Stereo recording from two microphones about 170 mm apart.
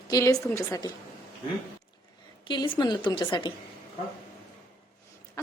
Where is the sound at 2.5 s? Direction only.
25° left (ahead or behind).